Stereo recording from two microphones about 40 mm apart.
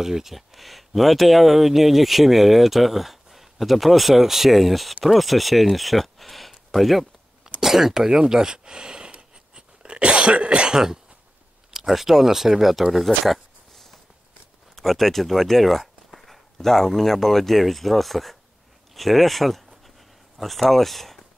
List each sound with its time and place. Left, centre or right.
0.0 s speech: centre